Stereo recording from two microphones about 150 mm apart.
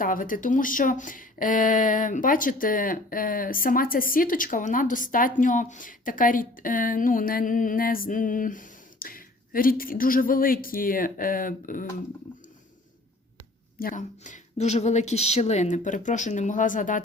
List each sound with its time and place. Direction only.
0.0 s speech: 65° left (ahead or behind)
13.7 s speech: 65° left (ahead or behind)